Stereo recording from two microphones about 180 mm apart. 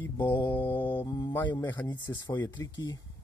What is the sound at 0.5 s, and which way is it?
Mantra, 10° left (ahead or behind).